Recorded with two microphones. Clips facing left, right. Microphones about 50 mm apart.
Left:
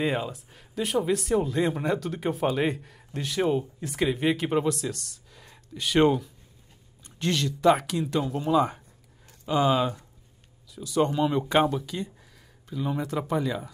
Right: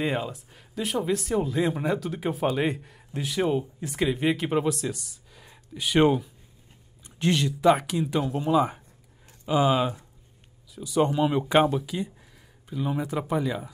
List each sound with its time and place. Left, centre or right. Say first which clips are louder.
0.0 s speech: even; centre